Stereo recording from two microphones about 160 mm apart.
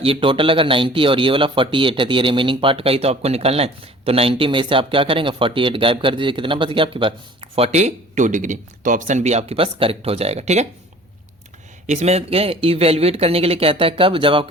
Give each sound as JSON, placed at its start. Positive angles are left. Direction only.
{"t": 0.0, "sound": "a man's voice", "side_deg": -35}
{"t": 11.9, "sound": "a man's voice", "side_deg": -45}